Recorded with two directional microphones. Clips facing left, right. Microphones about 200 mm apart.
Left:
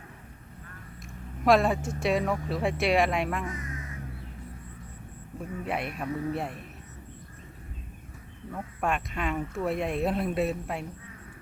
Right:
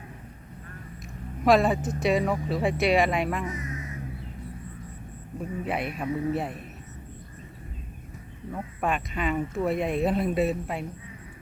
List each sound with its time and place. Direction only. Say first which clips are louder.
1.5 s speech: right 2 dB; centre (ahead or behind)
3.4 s speech: right 3 dB; 20° right (ahead or behind)
5.6 s speech: right 2 dB; centre (ahead or behind)
8.5 s speech: right 1 dB; centre (ahead or behind)